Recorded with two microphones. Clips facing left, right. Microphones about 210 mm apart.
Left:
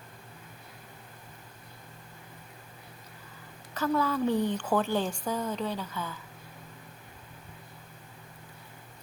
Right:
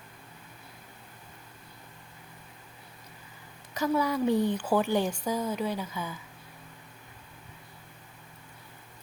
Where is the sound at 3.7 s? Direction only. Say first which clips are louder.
Right 1 dB; 15° right (ahead or behind).